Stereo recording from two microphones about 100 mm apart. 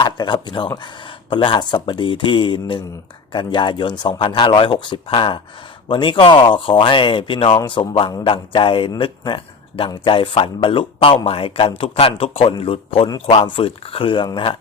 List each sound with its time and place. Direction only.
0.0 s speech: 50° left (ahead or behind)